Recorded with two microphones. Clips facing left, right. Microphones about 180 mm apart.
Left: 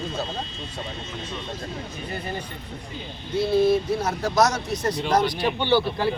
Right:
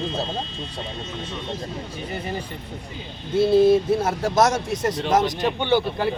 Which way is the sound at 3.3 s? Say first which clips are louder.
Right 4 dB; 25° right (ahead or behind).